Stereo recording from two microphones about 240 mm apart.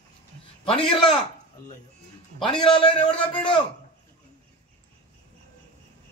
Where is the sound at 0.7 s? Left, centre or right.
Left.